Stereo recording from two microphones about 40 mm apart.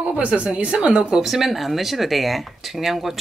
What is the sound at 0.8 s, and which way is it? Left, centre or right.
Speech, centre.